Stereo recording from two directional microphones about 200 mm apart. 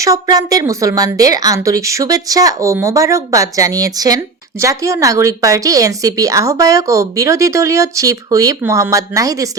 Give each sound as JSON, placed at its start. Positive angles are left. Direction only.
{"t": 0.0, "sound": "a woman's voice", "side_deg": -15}